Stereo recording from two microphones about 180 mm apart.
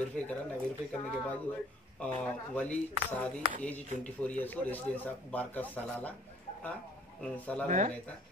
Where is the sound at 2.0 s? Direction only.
5° left (ahead or behind).